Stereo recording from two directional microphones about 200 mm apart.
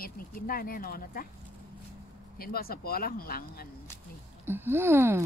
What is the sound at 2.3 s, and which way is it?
Speech, 50° left (ahead or behind).